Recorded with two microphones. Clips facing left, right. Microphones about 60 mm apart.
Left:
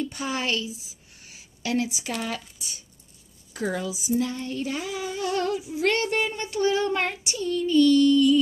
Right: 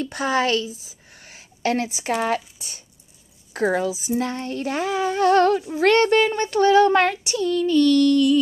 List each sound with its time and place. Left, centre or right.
0.0 s child singing: right
0.8 s a sound: right
3.5 s speech: right
5.8 s child singing: right